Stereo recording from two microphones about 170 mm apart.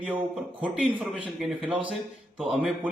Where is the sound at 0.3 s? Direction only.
Centre (ahead or behind).